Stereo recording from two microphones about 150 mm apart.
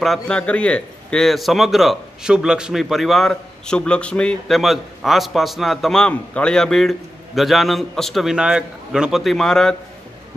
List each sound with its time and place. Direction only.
0.0 s a man's voice: 5° left (ahead or behind)